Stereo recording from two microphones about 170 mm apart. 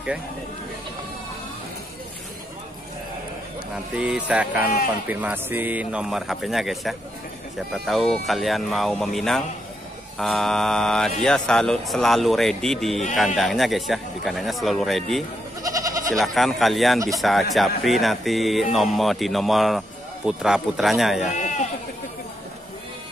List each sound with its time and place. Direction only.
3.7 s music: 5° right (ahead or behind)
5.0 s speech: 10° right (ahead or behind)
15.6 s goat: 20° right (ahead or behind)
16.2 s speech: centre (ahead or behind)
21.3 s speech: 45° left (ahead or behind)